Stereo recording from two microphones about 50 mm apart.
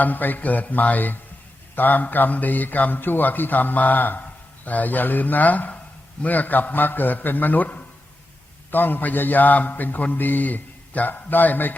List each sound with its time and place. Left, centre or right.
0.0 s a man's voice: left